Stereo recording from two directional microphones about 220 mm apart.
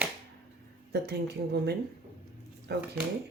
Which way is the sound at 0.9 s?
50° right (ahead or behind).